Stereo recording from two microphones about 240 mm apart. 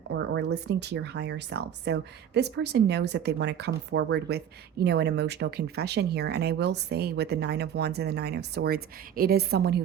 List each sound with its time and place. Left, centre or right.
0.1 s speech: right